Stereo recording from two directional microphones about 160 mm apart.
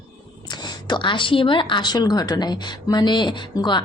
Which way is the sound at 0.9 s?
30° left (ahead or behind).